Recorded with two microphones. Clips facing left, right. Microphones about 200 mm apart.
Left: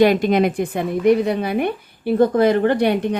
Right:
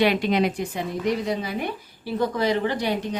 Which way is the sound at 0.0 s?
45° left (ahead or behind).